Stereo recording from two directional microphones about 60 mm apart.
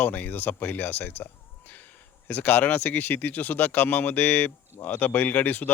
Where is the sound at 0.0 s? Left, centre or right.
Left.